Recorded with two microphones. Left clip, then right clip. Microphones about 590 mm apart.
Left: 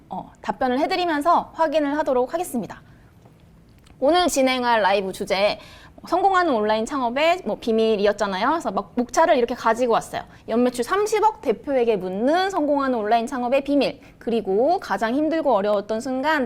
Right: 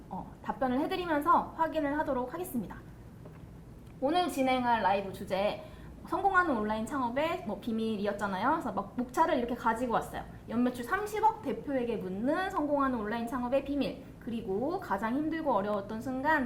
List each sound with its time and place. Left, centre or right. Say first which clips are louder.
0.4 s a woman's voice: left 10 dB; left
4.0 s a woman's voice: left 11 dB; left